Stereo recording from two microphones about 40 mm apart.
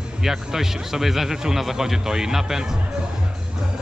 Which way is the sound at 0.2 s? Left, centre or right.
Centre.